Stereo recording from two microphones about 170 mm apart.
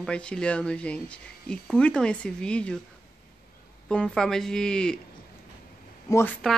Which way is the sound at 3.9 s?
5° left (ahead or behind).